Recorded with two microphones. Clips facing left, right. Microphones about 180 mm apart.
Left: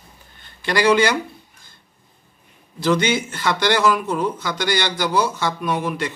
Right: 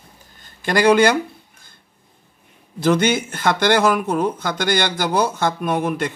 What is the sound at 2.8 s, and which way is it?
Speech, 50° right (ahead or behind).